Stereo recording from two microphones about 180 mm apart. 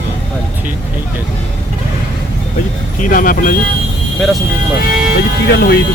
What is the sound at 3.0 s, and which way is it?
Speech, 50° left (ahead or behind).